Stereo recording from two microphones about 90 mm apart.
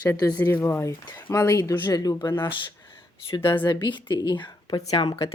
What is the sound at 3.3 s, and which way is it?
A woman's voice, 65° left (ahead or behind).